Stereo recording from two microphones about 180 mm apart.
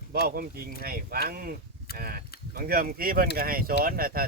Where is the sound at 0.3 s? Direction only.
55° right (ahead or behind).